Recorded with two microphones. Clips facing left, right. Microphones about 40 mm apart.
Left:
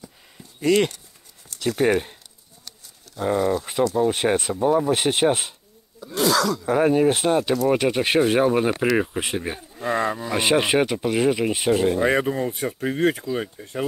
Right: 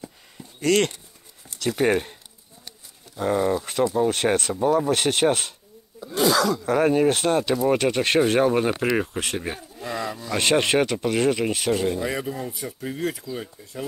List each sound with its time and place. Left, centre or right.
0.6 s speech: centre
3.2 s speech: centre
4.1 s speech: centre
5.9 s speech: centre
9.9 s speech: left
10.3 s speech: centre
12.0 s speech: left